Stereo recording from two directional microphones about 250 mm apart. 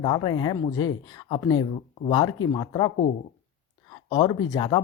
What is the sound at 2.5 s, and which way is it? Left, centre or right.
Speech, centre.